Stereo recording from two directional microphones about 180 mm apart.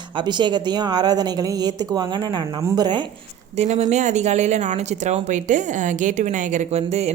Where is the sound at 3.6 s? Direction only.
40° right (ahead or behind).